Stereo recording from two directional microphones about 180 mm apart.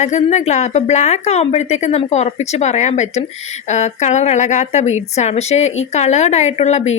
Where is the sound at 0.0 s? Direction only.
40° left (ahead or behind).